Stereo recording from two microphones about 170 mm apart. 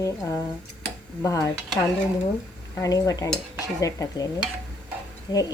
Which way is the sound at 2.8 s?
20° left (ahead or behind).